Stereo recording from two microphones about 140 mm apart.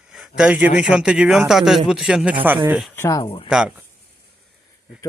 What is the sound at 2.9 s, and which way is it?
Speech, 20° left (ahead or behind).